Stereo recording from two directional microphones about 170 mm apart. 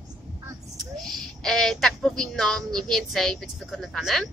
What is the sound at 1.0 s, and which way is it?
A woman's voice, centre (ahead or behind).